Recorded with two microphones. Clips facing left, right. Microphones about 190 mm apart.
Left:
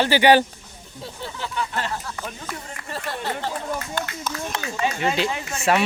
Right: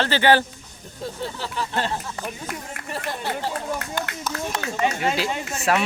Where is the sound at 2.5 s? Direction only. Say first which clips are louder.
Right 1 dB; 10° right (ahead or behind).